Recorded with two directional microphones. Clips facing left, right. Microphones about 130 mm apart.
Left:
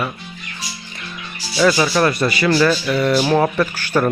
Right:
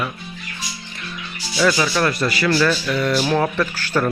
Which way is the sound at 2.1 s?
20° left (ahead or behind).